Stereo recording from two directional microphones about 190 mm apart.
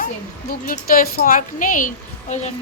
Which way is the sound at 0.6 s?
50° left (ahead or behind).